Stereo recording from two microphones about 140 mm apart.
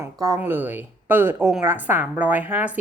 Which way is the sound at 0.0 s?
25° right (ahead or behind).